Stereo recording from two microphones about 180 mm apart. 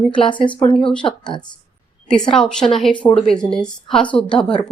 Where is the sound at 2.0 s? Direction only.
5° left (ahead or behind).